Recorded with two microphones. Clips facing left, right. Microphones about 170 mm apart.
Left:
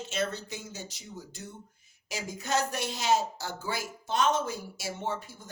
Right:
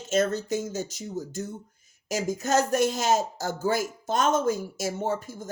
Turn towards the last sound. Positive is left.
turn(degrees=-45)  # may be behind; listen again after turning